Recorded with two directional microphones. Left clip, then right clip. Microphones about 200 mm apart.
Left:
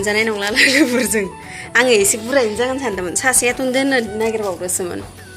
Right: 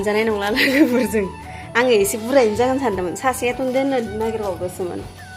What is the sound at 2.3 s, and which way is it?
Speech, 20° right (ahead or behind).